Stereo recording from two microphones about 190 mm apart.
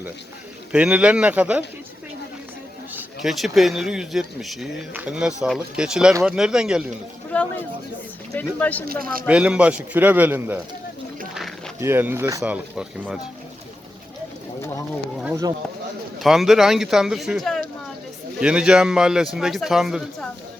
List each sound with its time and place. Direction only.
0.7 s a man's voice: 5° right (ahead or behind)
2.9 s speech: centre (ahead or behind)
7.3 s a man's voice: 5° left (ahead or behind)
8.9 s speech: 50° right (ahead or behind)
9.2 s a man's voice: 5° right (ahead or behind)
11.3 s a sound: centre (ahead or behind)
11.8 s a man's voice: 10° right (ahead or behind)
16.2 s speech: centre (ahead or behind)